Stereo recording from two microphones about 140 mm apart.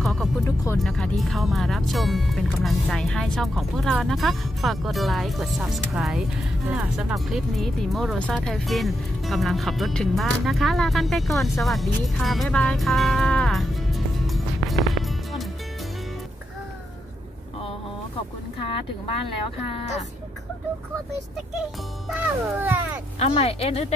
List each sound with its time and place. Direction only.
0.0 s music: centre (ahead or behind)
0.8 s speech: 5° left (ahead or behind)
22.1 s speech: 10° right (ahead or behind)
23.1 s speech: 45° left (ahead or behind)